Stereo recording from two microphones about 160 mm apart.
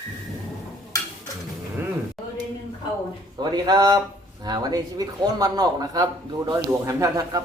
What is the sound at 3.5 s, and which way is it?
A man's voice, 25° right (ahead or behind).